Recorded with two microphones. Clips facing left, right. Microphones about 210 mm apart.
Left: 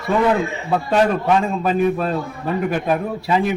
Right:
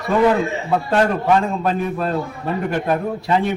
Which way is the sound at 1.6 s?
5° left (ahead or behind).